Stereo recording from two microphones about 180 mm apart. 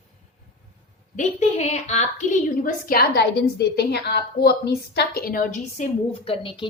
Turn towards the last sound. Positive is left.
turn(degrees=30)  # may be behind; listen again after turning